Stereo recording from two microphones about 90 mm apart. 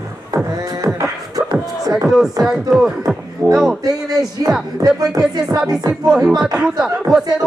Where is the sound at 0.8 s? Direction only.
40° right (ahead or behind).